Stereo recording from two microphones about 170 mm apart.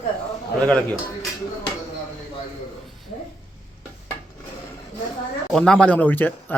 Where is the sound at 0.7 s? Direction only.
5° left (ahead or behind).